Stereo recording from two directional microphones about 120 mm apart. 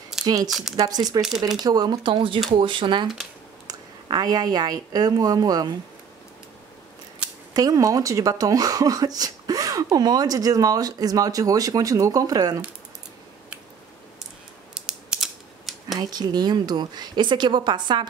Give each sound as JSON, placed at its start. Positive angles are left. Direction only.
{"t": 0.2, "sound": "speech", "side_deg": -30}
{"t": 0.5, "sound": "speech", "side_deg": 0}
{"t": 0.7, "sound": "a woman's voice", "side_deg": -35}
{"t": 7.5, "sound": "speech", "side_deg": -30}
{"t": 14.7, "sound": "mechanisms", "side_deg": -5}
{"t": 16.0, "sound": "speech", "side_deg": -35}